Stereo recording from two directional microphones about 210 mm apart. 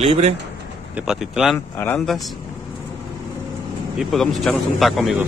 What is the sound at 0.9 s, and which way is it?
Speech, 5° right (ahead or behind).